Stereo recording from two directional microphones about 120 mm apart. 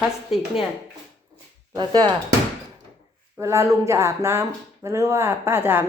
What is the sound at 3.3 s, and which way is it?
Speech, 25° right (ahead or behind).